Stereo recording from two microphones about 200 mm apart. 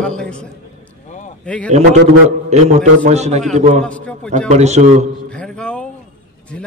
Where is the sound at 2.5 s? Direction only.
35° right (ahead or behind).